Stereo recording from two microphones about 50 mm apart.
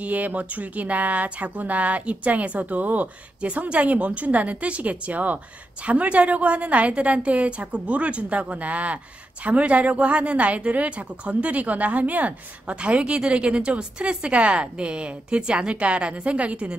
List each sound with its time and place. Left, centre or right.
0.0 s a woman's voice: right